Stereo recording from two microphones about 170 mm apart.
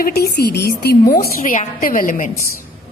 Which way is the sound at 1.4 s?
55° left (ahead or behind).